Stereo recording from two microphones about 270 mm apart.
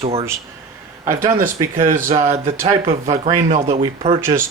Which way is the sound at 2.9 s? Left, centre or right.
Right.